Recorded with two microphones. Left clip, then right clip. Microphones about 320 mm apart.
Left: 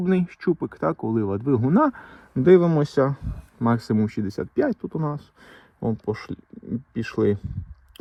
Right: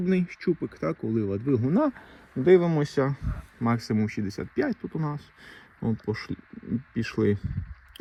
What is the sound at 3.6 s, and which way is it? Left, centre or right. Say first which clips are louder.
Speech: left 4 dB; left.